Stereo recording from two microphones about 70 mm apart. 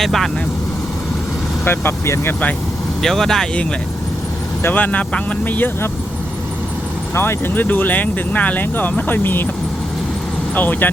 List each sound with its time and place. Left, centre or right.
0.0 s speech: centre
1.6 s speech: left
3.0 s speech: centre
4.7 s speech: left
7.1 s speech: left
10.5 s speech: left